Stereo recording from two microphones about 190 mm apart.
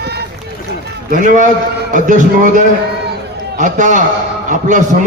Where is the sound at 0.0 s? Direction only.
60° right (ahead or behind).